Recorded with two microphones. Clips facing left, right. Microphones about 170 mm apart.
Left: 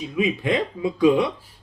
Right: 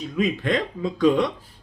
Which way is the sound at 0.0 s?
10° left (ahead or behind).